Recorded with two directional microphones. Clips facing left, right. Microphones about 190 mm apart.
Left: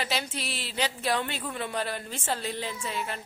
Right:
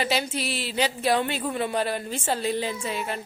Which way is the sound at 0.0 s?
5° right (ahead or behind).